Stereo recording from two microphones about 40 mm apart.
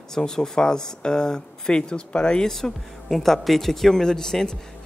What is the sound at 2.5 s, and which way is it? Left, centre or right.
Speech, centre.